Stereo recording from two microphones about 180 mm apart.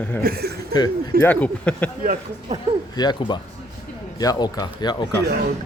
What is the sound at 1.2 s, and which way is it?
Speech, 10° left (ahead or behind).